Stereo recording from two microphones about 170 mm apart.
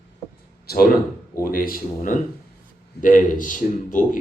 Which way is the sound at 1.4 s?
60° left (ahead or behind).